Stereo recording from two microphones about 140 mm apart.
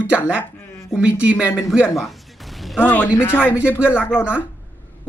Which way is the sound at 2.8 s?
15° left (ahead or behind).